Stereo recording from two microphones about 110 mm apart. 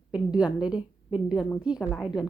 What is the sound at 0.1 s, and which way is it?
A woman's voice, 10° right (ahead or behind).